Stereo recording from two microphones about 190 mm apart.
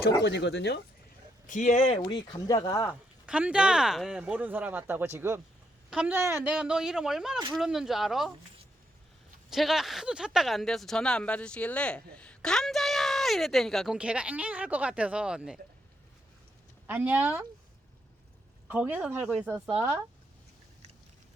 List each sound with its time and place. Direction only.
0.2 s speech: 65° left (ahead or behind)
1.5 s speech: 40° left (ahead or behind)
2.0 s speech: 25° left (ahead or behind)
3.2 s speech: 5° right (ahead or behind)
9.5 s speech: centre (ahead or behind)
16.8 s speech: 10° right (ahead or behind)
18.7 s speech: 10° right (ahead or behind)